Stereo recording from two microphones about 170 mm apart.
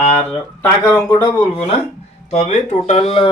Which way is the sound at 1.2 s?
35° left (ahead or behind).